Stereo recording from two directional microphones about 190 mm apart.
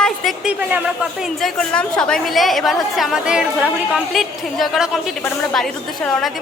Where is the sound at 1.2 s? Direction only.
Centre (ahead or behind).